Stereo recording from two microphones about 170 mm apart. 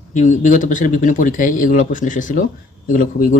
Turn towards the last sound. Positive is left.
turn(degrees=50)  # may be behind; listen again after turning